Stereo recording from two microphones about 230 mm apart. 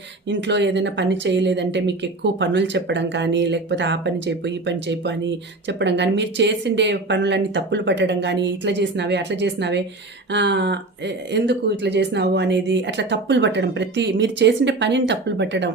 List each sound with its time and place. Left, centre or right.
0.3 s speech: right